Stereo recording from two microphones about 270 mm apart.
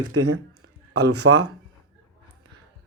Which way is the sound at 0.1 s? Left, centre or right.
Right.